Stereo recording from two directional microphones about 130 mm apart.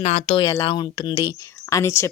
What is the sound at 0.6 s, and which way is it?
Speech, 35° left (ahead or behind).